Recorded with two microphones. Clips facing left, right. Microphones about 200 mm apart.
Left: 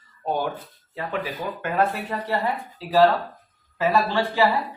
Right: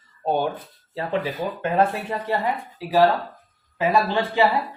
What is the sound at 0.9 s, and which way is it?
Speech, 30° right (ahead or behind).